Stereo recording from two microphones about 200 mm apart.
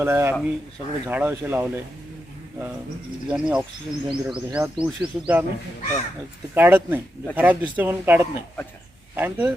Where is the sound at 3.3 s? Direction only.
5° right (ahead or behind).